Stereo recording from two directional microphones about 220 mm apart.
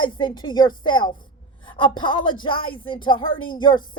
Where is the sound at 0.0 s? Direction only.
20° left (ahead or behind).